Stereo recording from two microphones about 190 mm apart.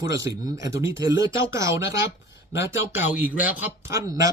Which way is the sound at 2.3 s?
90° left.